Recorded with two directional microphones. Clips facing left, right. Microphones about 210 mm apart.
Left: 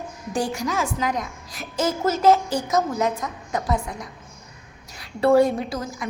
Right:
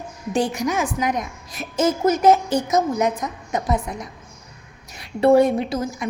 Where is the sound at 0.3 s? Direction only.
20° right (ahead or behind).